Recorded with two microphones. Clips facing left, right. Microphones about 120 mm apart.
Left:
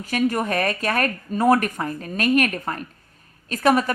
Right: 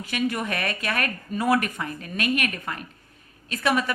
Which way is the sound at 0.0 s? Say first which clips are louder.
Left 5 dB; 40° left (ahead or behind).